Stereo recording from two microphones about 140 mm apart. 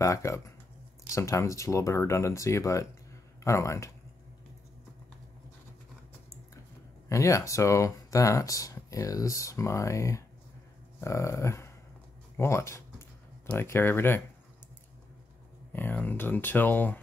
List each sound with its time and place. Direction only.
0.0 s speech: 20° left (ahead or behind)
7.1 s speech: 20° left (ahead or behind)
15.7 s speech: 15° left (ahead or behind)